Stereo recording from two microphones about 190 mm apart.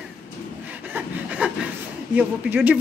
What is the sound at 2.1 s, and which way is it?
Speech, 5° right (ahead or behind).